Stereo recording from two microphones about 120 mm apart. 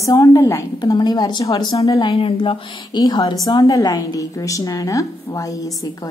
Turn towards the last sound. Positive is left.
turn(degrees=30)  # may be behind; listen again after turning